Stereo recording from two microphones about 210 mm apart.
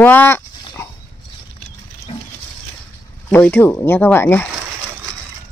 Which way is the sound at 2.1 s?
25° left (ahead or behind).